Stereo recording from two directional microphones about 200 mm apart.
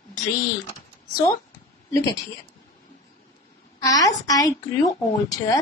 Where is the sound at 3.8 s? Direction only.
15° left (ahead or behind).